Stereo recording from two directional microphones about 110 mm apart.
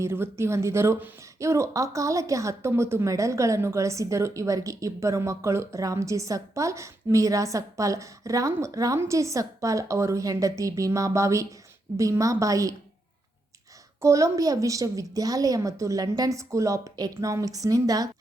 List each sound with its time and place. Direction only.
0.0 s speech: 25° right (ahead or behind)
14.0 s a woman's voice: 30° right (ahead or behind)